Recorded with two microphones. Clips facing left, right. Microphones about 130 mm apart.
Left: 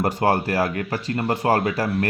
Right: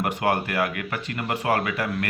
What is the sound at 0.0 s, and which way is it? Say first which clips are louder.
Speech: left 4 dB; 35° left (ahead or behind).